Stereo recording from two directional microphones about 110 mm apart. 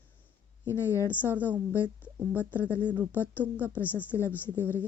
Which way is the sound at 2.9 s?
20° right (ahead or behind).